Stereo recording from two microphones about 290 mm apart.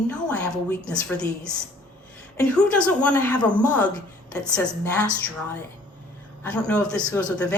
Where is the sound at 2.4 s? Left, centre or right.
Centre.